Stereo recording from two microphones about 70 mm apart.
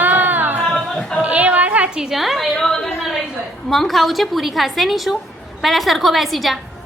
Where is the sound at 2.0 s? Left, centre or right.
Centre.